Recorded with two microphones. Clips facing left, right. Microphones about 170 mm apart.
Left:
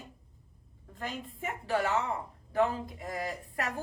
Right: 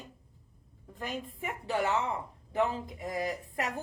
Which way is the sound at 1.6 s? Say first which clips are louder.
Even; 20° right (ahead or behind).